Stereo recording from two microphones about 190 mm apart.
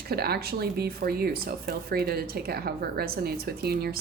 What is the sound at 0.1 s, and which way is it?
A woman's voice, 55° right (ahead or behind).